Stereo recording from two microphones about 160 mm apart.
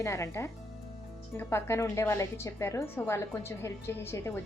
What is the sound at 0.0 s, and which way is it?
A woman's voice, 20° left (ahead or behind).